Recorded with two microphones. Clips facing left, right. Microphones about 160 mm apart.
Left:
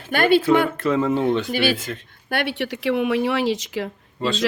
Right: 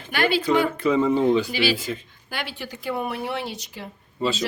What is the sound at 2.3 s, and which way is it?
A woman's voice, 65° left (ahead or behind).